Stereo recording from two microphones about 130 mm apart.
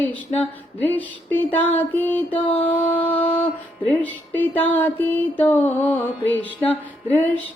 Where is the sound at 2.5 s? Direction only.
45° left (ahead or behind).